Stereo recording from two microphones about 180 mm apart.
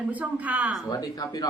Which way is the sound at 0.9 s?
20° left (ahead or behind).